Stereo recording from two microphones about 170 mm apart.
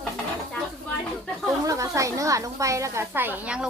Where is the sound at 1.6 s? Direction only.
20° right (ahead or behind).